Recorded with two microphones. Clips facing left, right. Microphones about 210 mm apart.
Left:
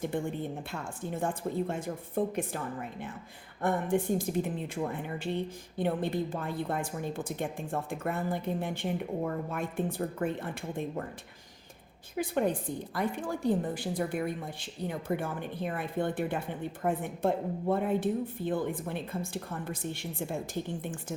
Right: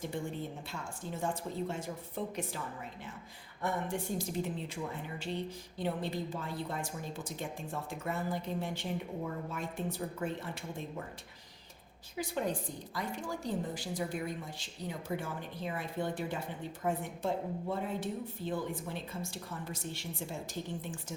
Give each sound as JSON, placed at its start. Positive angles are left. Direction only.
{"t": 0.1, "sound": "a woman's voice", "side_deg": 55}
{"t": 3.6, "sound": "a woman's voice", "side_deg": 55}
{"t": 12.1, "sound": "a woman's voice", "side_deg": 55}